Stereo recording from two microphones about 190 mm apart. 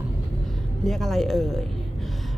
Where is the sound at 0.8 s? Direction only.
Centre (ahead or behind).